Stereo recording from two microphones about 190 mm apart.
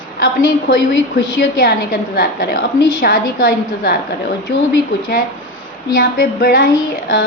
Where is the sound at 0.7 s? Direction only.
65° left (ahead or behind).